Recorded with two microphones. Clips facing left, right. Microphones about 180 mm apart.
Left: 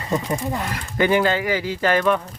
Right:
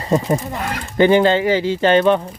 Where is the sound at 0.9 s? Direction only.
30° right (ahead or behind).